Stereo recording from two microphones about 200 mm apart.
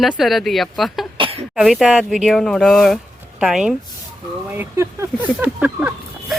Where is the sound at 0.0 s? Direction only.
Centre (ahead or behind).